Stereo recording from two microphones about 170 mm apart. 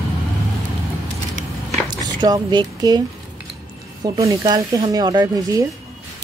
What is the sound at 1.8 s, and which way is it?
Speech, 25° right (ahead or behind).